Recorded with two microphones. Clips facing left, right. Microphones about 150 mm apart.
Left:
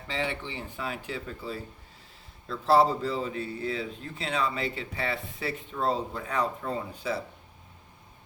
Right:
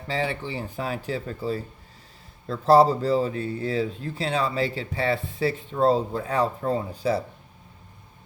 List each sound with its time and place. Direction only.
0.1 s speech: 35° right (ahead or behind)